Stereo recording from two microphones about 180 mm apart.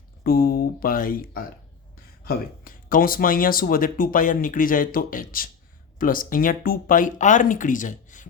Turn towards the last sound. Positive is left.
turn(degrees=45)  # may be behind; listen again after turning